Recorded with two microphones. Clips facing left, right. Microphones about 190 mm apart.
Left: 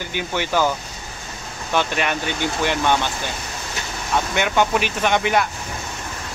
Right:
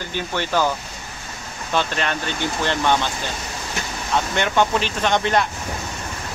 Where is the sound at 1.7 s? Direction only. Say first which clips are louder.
Left 1 dB; 10° left (ahead or behind).